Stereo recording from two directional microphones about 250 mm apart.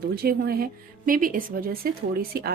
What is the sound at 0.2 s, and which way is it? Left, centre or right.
A woman's voice, right.